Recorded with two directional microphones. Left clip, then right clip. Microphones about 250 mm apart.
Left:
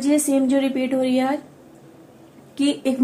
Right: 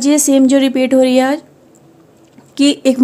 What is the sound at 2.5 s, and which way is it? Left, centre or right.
Speech, right.